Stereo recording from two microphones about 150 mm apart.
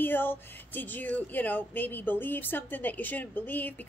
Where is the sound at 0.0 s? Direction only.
15° left (ahead or behind).